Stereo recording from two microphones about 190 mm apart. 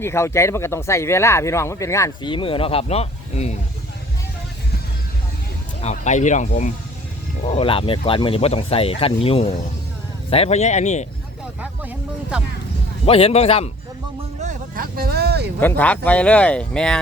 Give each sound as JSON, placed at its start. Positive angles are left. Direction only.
{"t": 0.0, "sound": "speech", "side_deg": 15}
{"t": 5.8, "sound": "speech", "side_deg": 40}
{"t": 11.6, "sound": "music", "side_deg": -10}
{"t": 13.1, "sound": "speech", "side_deg": 30}
{"t": 14.8, "sound": "speech", "side_deg": -55}
{"t": 15.6, "sound": "speech", "side_deg": 10}